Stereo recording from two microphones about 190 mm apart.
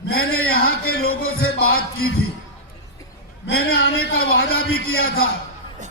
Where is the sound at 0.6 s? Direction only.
55° left (ahead or behind).